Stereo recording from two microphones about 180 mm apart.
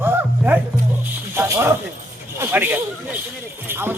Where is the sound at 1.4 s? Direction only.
15° right (ahead or behind).